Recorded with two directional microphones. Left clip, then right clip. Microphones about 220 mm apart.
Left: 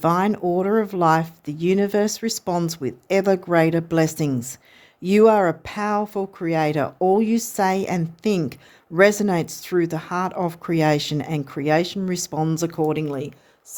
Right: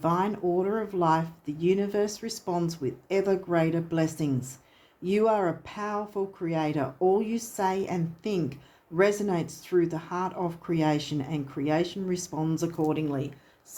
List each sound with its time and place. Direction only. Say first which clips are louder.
0.0 s speech: left 7 dB; 50° left (ahead or behind)